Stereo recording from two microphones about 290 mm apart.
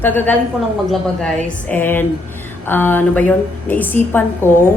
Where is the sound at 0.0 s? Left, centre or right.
Centre.